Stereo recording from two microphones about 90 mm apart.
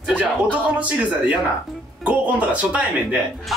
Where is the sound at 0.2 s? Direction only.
15° right (ahead or behind).